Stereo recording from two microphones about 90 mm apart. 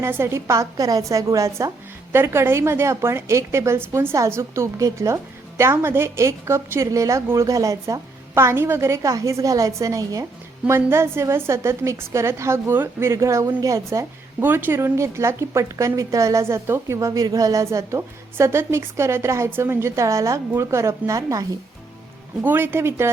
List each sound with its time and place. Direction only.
0.0 s a woman's voice: 30° right (ahead or behind)
10.7 s a woman's voice: 30° right (ahead or behind)
14.4 s a woman's voice: 25° right (ahead or behind)
17.1 s a woman's voice: 45° right (ahead or behind)
22.4 s a woman's voice: 25° right (ahead or behind)